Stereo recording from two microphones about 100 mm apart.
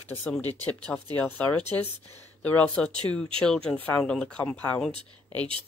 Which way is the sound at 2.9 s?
50° right (ahead or behind).